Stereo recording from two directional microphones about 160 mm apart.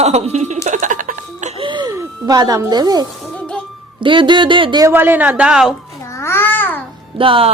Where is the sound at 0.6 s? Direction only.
50° right (ahead or behind).